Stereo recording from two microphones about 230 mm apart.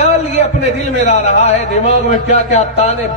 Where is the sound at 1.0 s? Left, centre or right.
Left.